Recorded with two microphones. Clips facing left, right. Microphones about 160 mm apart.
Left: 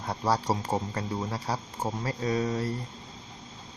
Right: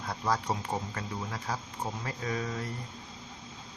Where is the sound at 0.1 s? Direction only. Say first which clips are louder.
Left 4 dB; 35° left (ahead or behind).